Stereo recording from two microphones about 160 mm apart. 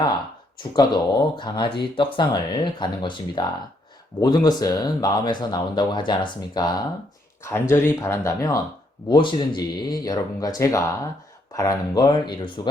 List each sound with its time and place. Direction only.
0.0 s speech: 30° left (ahead or behind)
7.4 s speech: 15° left (ahead or behind)
9.0 s speech: 30° left (ahead or behind)